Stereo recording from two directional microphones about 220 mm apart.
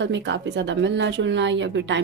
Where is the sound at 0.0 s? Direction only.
55° right (ahead or behind).